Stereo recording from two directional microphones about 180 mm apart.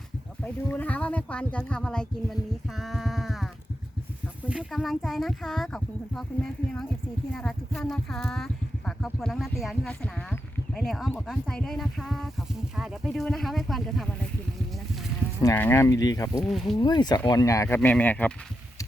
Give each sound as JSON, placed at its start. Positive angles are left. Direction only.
{"t": 0.4, "sound": "speech", "side_deg": 10}
{"t": 2.7, "sound": "a sound", "side_deg": 0}
{"t": 4.4, "sound": "speech", "side_deg": -5}
{"t": 15.5, "sound": "speech", "side_deg": 10}
{"t": 16.4, "sound": "speech", "side_deg": 0}
{"t": 16.7, "sound": "speech", "side_deg": 25}